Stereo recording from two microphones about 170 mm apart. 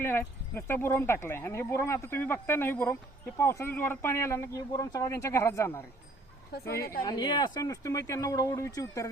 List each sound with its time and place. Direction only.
0.0 s speech: 15° left (ahead or behind)
7.0 s speech: 25° left (ahead or behind)